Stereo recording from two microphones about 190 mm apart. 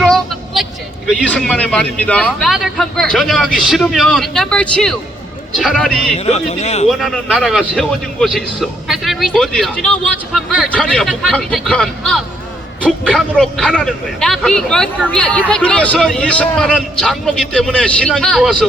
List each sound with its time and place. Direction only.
0.0 s a man's voice: centre (ahead or behind)
6.1 s speech: 35° left (ahead or behind)
7.0 s a man's voice: centre (ahead or behind)